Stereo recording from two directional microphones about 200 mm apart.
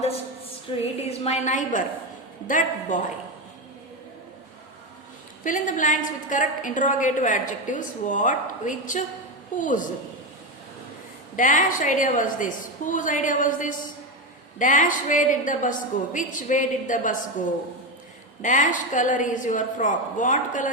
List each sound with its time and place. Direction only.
0.7 s a woman's voice: 30° left (ahead or behind)
5.4 s a woman's voice: 40° left (ahead or behind)
11.3 s a woman's voice: 40° left (ahead or behind)
18.4 s a woman's voice: 40° left (ahead or behind)